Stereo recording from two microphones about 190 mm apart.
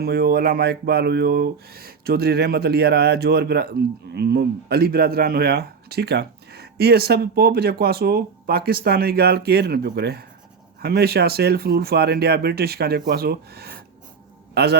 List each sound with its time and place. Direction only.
0.0 s a man's voice: 55° right (ahead or behind)